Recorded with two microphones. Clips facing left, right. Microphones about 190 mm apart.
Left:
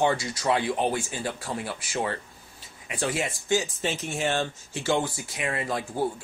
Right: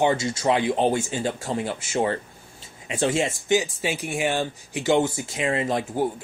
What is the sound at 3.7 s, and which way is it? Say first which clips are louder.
Speech: right 3 dB; 10° right (ahead or behind).